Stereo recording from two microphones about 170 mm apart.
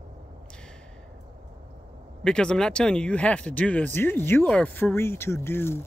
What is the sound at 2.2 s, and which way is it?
Speech, 5° left (ahead or behind).